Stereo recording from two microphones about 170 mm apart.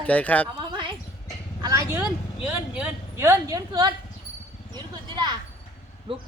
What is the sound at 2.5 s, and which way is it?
A woman's voice, 5° right (ahead or behind).